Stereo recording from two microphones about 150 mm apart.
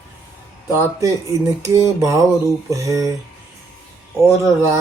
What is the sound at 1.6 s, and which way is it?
Speech, 20° right (ahead or behind).